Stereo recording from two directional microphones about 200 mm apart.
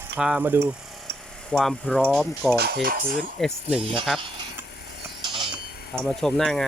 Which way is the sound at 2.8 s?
45° right (ahead or behind).